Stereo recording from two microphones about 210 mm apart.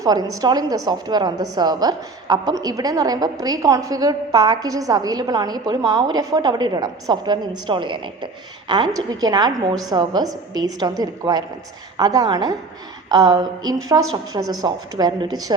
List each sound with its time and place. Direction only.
0.0 s a woman's voice: 20° right (ahead or behind)